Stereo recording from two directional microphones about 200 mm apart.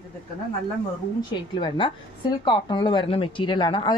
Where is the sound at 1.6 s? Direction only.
25° left (ahead or behind).